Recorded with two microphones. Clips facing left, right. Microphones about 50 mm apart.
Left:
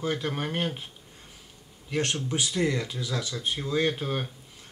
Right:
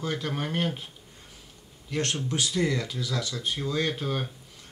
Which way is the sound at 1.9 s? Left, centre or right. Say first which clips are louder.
Left 1 dB; left.